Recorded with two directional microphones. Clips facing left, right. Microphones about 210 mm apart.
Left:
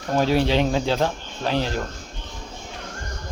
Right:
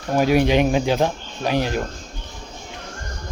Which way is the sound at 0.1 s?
15° right (ahead or behind).